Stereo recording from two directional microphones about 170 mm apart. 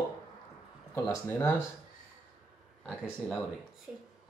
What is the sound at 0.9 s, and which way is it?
Speech, 15° left (ahead or behind).